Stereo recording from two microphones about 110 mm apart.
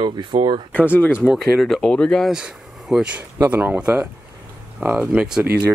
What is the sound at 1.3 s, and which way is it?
Speech, centre (ahead or behind).